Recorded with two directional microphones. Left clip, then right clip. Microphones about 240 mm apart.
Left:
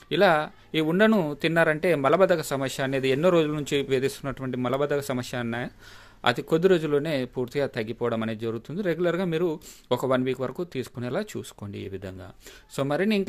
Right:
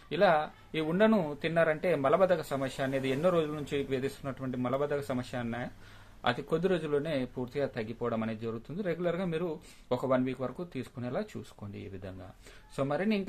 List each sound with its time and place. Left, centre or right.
0.1 s speech: left